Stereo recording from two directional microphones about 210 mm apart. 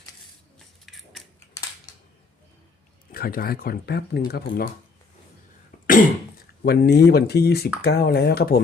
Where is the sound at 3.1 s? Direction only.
45° left (ahead or behind).